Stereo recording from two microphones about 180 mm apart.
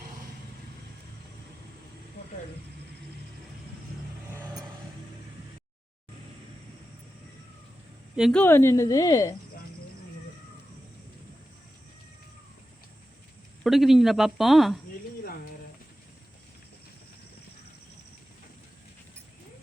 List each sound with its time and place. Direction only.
8.1 s speech: centre (ahead or behind)
8.4 s speech: 15° left (ahead or behind)
13.7 s speech: centre (ahead or behind)